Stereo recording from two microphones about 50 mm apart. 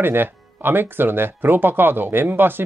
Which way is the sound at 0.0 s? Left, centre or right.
Right.